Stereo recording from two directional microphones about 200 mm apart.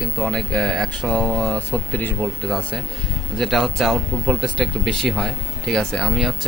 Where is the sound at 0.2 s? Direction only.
Centre (ahead or behind).